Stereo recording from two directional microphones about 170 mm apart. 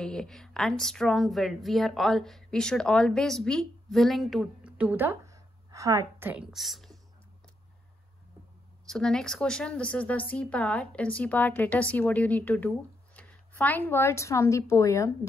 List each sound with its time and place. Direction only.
0.0 s a woman's voice: 5° left (ahead or behind)
8.8 s speech: 5° left (ahead or behind)